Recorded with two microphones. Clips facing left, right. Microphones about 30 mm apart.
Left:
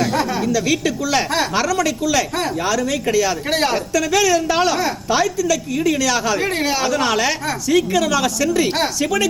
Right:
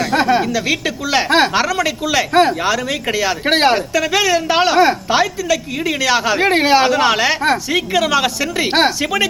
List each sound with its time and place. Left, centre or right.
0.1 s speech: right